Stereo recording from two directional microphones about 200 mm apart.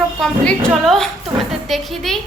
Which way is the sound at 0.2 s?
5° left (ahead or behind).